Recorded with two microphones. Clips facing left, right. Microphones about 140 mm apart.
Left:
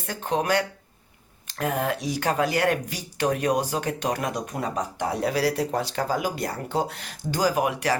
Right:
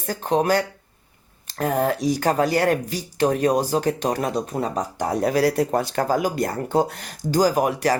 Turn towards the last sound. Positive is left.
turn(degrees=-40)  # may be behind; listen again after turning